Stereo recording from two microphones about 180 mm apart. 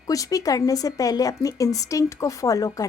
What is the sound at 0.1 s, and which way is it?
Speech, 20° left (ahead or behind).